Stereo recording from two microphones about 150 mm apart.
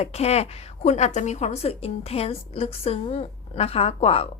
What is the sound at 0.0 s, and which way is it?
A woman's voice, 45° left (ahead or behind).